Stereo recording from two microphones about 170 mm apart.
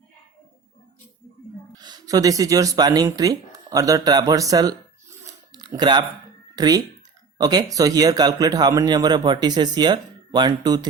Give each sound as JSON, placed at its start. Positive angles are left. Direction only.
{"t": 1.7, "sound": "speech", "side_deg": -25}
{"t": 5.2, "sound": "a sound", "side_deg": -25}
{"t": 6.6, "sound": "speech", "side_deg": -25}